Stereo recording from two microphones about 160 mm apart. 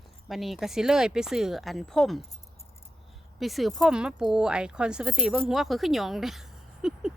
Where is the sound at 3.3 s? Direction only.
Centre (ahead or behind).